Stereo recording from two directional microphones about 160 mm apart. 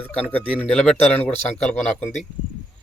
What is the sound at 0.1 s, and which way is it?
Speech, 10° left (ahead or behind).